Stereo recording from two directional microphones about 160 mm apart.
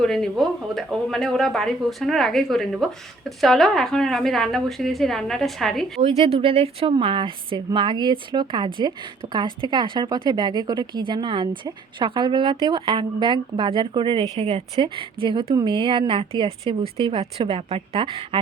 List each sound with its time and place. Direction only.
0.0 s speech: 5° left (ahead or behind)
6.0 s a woman's voice: 40° right (ahead or behind)